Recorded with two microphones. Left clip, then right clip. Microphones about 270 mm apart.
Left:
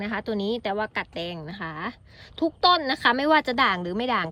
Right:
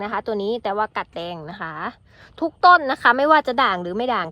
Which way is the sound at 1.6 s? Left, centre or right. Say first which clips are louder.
Right 4 dB; right.